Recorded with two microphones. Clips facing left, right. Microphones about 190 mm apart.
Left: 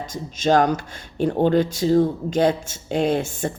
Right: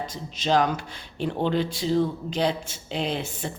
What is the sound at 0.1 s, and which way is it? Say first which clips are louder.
Speech: left 6 dB; 45° left (ahead or behind).